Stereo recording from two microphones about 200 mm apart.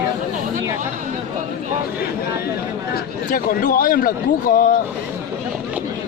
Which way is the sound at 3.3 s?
45° left (ahead or behind).